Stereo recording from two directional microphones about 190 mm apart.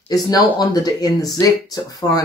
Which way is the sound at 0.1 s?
20° left (ahead or behind).